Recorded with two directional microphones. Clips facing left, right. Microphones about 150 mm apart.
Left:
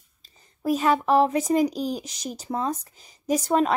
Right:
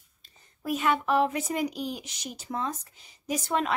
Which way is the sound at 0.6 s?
35° left (ahead or behind).